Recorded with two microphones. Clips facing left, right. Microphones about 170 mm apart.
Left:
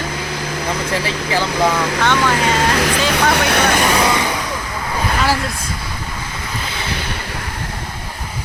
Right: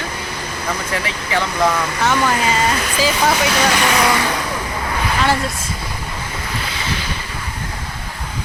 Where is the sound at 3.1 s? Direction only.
60° left (ahead or behind).